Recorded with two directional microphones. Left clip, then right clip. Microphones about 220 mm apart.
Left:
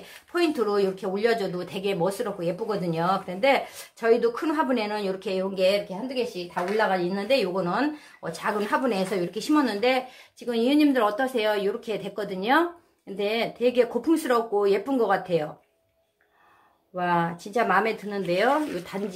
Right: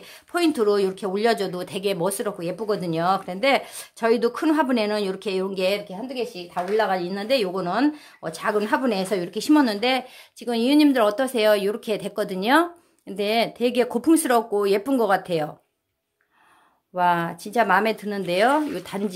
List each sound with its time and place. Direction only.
0.0 s speech: 50° right (ahead or behind)
16.9 s speech: 50° right (ahead or behind)